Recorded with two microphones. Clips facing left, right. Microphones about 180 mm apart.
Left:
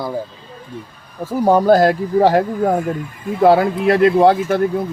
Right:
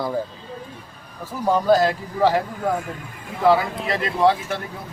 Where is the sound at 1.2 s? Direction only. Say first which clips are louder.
Left 7 dB; 50° left (ahead or behind).